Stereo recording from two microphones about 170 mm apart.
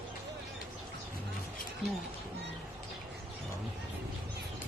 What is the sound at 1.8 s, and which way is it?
Speech, 35° right (ahead or behind).